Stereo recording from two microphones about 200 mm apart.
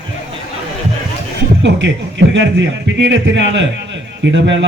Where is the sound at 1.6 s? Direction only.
60° right (ahead or behind).